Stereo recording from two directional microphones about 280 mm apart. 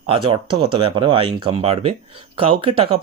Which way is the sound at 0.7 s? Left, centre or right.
Centre.